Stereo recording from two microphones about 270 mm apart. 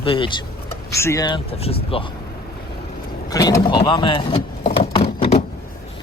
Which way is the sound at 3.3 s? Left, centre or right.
Centre.